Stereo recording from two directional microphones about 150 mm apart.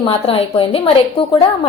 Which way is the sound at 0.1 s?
40° left (ahead or behind).